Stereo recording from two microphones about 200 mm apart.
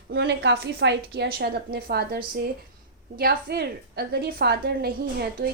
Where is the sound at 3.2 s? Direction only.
50° right (ahead or behind).